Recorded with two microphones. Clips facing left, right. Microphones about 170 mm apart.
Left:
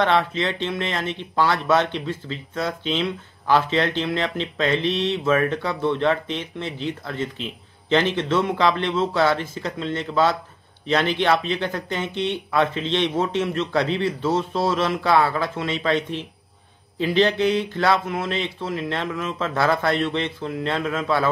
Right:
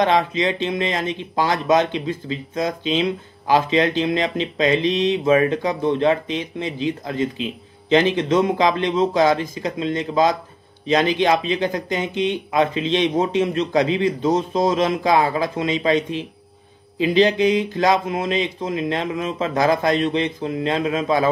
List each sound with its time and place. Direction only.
0.0 s speech: 15° right (ahead or behind)